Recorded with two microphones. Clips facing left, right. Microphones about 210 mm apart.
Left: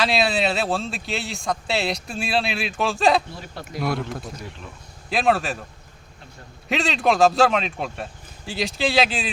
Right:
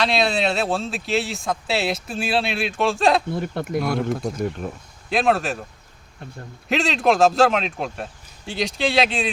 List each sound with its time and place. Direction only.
0.0 s a man's voice: centre (ahead or behind)
3.3 s speech: 55° right (ahead or behind)
3.8 s a man's voice: centre (ahead or behind)
4.2 s speech: 50° right (ahead or behind)
5.0 s a man's voice: centre (ahead or behind)
6.7 s a man's voice: centre (ahead or behind)